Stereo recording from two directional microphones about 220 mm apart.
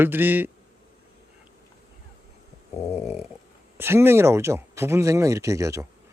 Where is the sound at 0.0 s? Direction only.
10° right (ahead or behind).